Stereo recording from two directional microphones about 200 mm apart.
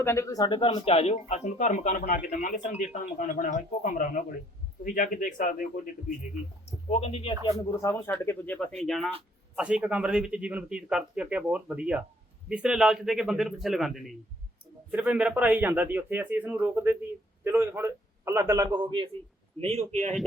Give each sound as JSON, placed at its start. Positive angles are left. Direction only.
{"t": 0.0, "sound": "speech", "side_deg": 15}
{"t": 6.9, "sound": "speech", "side_deg": 30}
{"t": 7.6, "sound": "a man's voice", "side_deg": 15}